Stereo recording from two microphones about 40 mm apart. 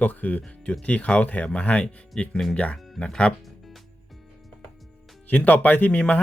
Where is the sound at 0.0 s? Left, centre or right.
Left.